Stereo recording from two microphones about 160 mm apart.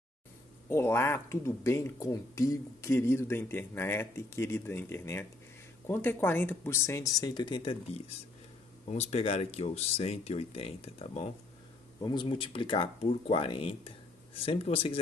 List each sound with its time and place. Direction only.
0.7 s speech: 15° left (ahead or behind); by 11.3 s 40° left (ahead or behind)
12.0 s speech: 30° left (ahead or behind)